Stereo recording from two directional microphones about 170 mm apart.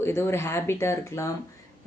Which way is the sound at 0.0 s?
15° left (ahead or behind).